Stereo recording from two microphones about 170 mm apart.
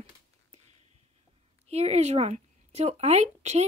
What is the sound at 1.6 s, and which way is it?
A woman's voice, 40° right (ahead or behind).